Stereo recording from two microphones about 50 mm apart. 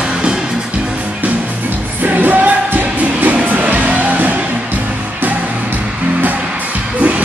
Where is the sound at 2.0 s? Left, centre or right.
Right.